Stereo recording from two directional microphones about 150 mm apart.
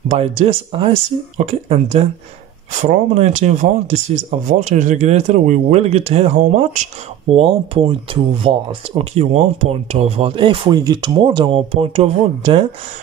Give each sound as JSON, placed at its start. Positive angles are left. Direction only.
{"t": 0.1, "sound": "speech", "side_deg": -40}
{"t": 2.7, "sound": "speech", "side_deg": -55}
{"t": 7.3, "sound": "speech", "side_deg": -35}